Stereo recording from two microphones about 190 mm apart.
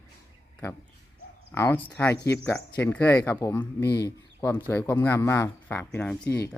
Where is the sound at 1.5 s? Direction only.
10° left (ahead or behind).